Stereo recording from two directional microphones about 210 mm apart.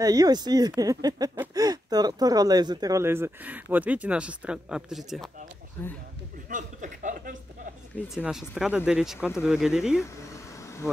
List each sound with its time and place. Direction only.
0.0 s speech: 15° right (ahead or behind); by 5.3 s centre (ahead or behind)
6.5 s a sound: 35° right (ahead or behind)
8.1 s speech: centre (ahead or behind)